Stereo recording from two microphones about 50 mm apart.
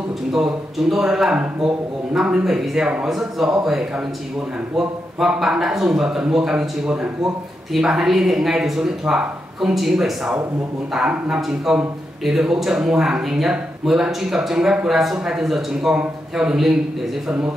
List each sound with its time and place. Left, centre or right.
0.3 s speech: centre
2.4 s a man's voice: centre
4.7 s speech: centre
11.4 s a man's voice: centre